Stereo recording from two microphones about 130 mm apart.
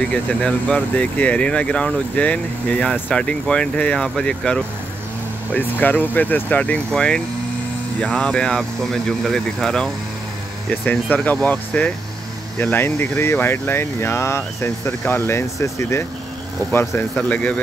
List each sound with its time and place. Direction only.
0.0 s speech: 10° left (ahead or behind)
10.9 s speech: 10° left (ahead or behind)